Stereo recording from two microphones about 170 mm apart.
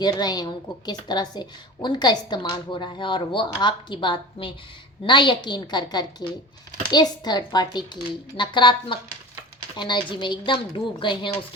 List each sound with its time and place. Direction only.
0.0 s a woman's voice: 25° left (ahead or behind)